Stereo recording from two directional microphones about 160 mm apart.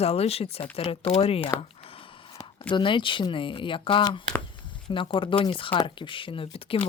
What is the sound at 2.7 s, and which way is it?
Speech, 30° left (ahead or behind).